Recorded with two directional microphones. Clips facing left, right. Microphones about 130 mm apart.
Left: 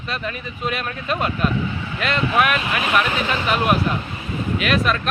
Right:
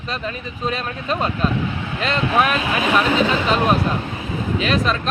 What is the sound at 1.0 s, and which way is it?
Speech, 30° right (ahead or behind).